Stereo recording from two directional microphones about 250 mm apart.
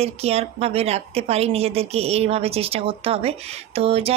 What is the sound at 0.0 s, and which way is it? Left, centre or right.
Speech, right.